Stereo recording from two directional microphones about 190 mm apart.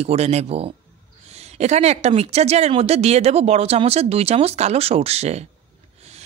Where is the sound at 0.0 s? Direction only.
35° right (ahead or behind).